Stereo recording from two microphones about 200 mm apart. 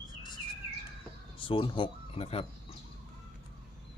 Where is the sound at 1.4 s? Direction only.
25° left (ahead or behind).